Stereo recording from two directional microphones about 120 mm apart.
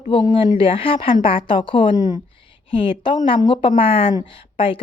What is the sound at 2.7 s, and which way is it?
Speech, 45° left (ahead or behind).